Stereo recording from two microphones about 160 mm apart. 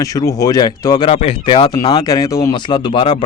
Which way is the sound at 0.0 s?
20° left (ahead or behind).